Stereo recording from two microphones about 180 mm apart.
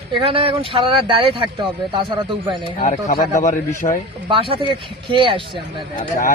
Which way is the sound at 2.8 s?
50° left (ahead or behind).